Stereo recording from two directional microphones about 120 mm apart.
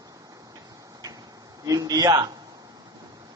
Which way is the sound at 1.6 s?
30° right (ahead or behind).